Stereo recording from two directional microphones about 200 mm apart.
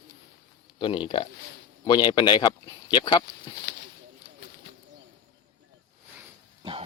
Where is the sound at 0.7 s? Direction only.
25° left (ahead or behind).